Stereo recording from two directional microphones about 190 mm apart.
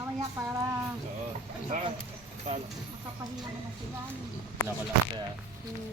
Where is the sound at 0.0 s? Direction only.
15° right (ahead or behind).